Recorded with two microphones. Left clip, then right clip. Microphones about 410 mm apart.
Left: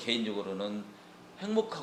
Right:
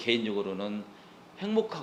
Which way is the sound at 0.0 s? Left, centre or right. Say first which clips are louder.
Right 4 dB; right.